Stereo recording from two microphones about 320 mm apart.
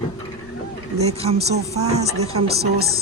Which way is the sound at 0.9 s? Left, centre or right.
Centre.